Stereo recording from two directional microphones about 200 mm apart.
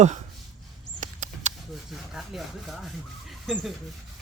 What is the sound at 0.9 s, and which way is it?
Mouse, 40° right (ahead or behind).